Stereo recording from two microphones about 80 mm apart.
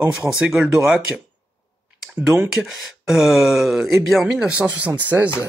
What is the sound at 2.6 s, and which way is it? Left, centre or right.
Speech, centre.